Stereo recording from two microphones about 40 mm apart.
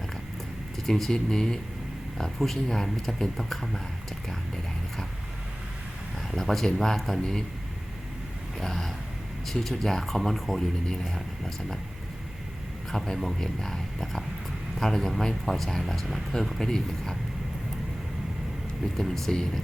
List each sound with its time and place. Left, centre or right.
0.9 s speech: centre
1.1 s speech: centre
2.1 s speech: centre
4.3 s clip-clop: centre
6.3 s speech: centre
8.6 s speech: centre
12.9 s a man's voice: centre
18.9 s speech: centre